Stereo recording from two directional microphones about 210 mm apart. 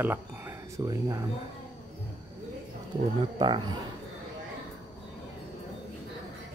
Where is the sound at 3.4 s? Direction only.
20° right (ahead or behind).